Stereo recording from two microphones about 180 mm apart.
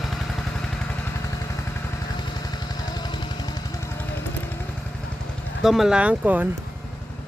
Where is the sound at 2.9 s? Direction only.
25° left (ahead or behind).